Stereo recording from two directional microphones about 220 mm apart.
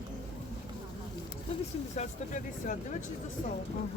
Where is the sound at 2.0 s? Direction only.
35° left (ahead or behind).